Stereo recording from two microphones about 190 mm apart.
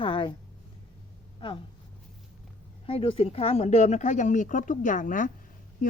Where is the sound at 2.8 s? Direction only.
30° left (ahead or behind).